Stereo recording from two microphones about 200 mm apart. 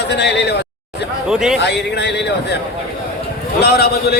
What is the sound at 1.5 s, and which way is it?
A man's voice, 60° left (ahead or behind).